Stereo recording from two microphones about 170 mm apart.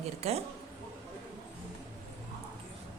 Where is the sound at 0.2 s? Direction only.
40° right (ahead or behind).